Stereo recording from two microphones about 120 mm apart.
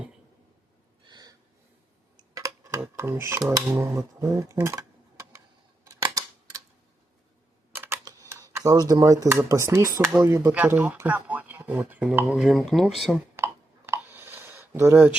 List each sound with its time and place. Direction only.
1.0 s gasp: 35° right (ahead or behind)
2.3 s dishes: 25° right (ahead or behind)
3.7 s speech: 20° right (ahead or behind)
4.5 s a sound: 20° right (ahead or behind)
7.7 s camera: 20° right (ahead or behind)
8.0 s speech: 25° right (ahead or behind)
10.5 s speech: 15° right (ahead or behind)
13.3 s a sound: 20° right (ahead or behind)